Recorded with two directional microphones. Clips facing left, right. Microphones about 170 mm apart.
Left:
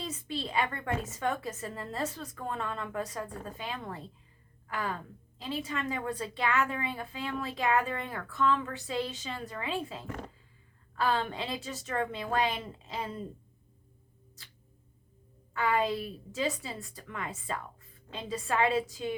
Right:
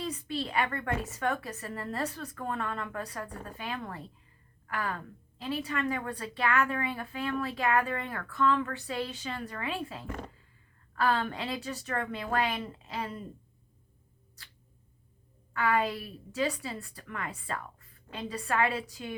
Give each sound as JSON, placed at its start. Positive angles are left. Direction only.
{"t": 0.0, "sound": "a woman's voice", "side_deg": 20}
{"t": 15.5, "sound": "a woman's voice", "side_deg": 20}